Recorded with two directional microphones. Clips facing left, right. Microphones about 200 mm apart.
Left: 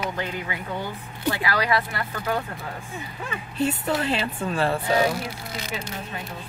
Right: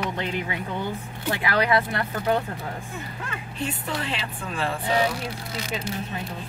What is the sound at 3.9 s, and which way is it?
Speech, 45° left (ahead or behind).